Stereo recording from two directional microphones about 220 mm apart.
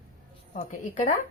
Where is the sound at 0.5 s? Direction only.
30° left (ahead or behind).